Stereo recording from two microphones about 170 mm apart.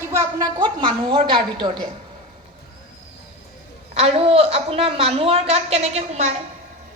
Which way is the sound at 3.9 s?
35° right (ahead or behind).